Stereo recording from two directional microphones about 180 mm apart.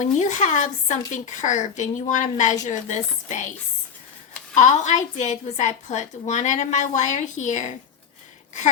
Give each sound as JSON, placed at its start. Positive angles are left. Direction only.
{"t": 0.0, "sound": "speech", "side_deg": 45}
{"t": 4.5, "sound": "speech", "side_deg": 40}